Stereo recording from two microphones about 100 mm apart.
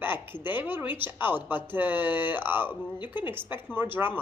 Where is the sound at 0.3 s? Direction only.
20° right (ahead or behind).